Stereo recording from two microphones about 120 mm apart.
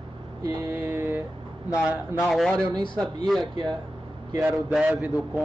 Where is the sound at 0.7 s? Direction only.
20° right (ahead or behind).